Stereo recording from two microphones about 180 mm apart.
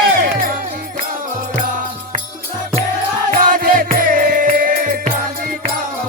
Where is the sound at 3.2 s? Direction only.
50° right (ahead or behind).